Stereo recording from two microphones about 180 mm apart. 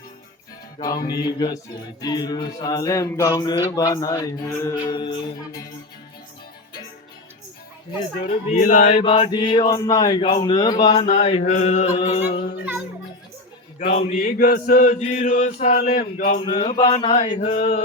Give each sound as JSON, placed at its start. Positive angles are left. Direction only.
{"t": 0.8, "sound": "music", "side_deg": 20}
{"t": 8.3, "sound": "chant", "side_deg": 50}
{"t": 9.0, "sound": "music", "side_deg": 30}
{"t": 10.4, "sound": "mantra", "side_deg": 25}
{"t": 13.7, "sound": "mantra", "side_deg": 35}
{"t": 14.2, "sound": "chant", "side_deg": 50}
{"t": 16.4, "sound": "music", "side_deg": 30}
{"t": 17.5, "sound": "mantra", "side_deg": 40}